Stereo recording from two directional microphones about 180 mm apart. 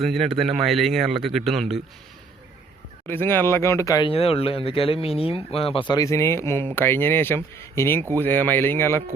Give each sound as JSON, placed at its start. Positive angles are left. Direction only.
{"t": 0.0, "sound": "speech", "side_deg": 0}
{"t": 3.1, "sound": "speech", "side_deg": 10}
{"t": 4.1, "sound": "speech", "side_deg": 30}
{"t": 5.9, "sound": "speech", "side_deg": 20}